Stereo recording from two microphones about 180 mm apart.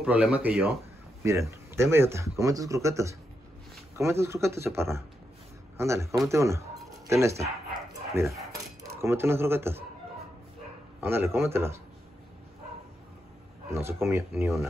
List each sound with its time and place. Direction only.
0.0 s a man's voice: 5° right (ahead or behind)
11.0 s speech: 10° right (ahead or behind)
13.7 s speech: 15° right (ahead or behind)